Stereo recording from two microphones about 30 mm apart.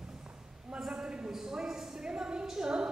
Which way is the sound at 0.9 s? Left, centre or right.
Right.